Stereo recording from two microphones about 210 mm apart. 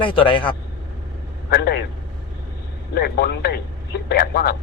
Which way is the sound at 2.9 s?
50° left (ahead or behind).